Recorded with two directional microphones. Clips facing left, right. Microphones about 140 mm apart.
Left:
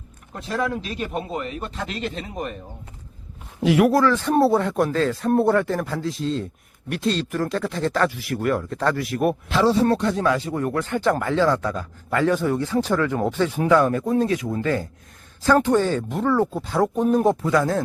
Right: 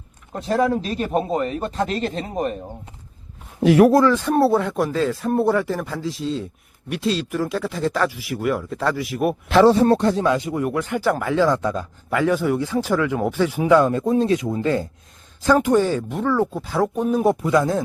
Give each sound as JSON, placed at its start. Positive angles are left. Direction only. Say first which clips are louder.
{"t": 0.3, "sound": "speech", "louder": "right 6 dB", "side_deg": -35}
{"t": 3.6, "sound": "speech", "louder": "right 4 dB", "side_deg": -40}
{"t": 3.9, "sound": "speech", "louder": "right 2 dB", "side_deg": -15}
{"t": 9.5, "sound": "speech", "louder": "right 7 dB", "side_deg": -60}
{"t": 9.8, "sound": "speech", "louder": "right 3 dB", "side_deg": -35}
{"t": 10.2, "sound": "speech", "louder": "right 1 dB", "side_deg": -15}
{"t": 11.5, "sound": "a man's voice", "louder": "right 2 dB", "side_deg": -20}
{"t": 12.1, "sound": "speech", "louder": "right 1 dB", "side_deg": -10}
{"t": 15.4, "sound": "speech", "louder": "right 1 dB", "side_deg": -15}
{"t": 16.0, "sound": "speech", "louder": "even", "side_deg": 0}
{"t": 17.4, "sound": "speech", "louder": "right 2 dB", "side_deg": -15}